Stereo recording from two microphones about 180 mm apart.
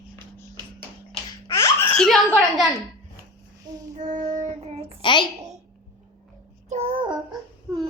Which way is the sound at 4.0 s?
40° right (ahead or behind).